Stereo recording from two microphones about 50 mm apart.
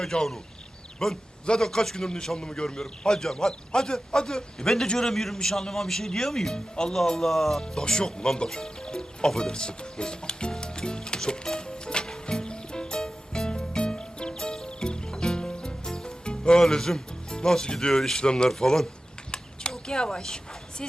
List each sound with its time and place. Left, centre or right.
0.0 s a man's voice: centre
7.6 s music: centre
19.3 s a sound: centre